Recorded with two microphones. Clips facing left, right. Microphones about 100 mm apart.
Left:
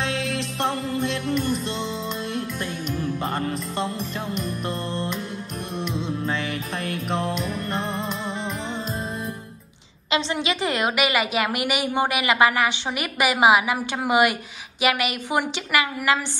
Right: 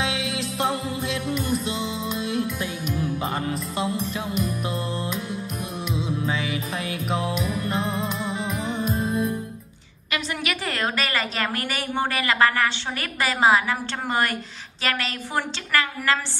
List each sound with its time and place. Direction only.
0.0 s music: 5° right (ahead or behind)
10.1 s a woman's voice: 20° left (ahead or behind)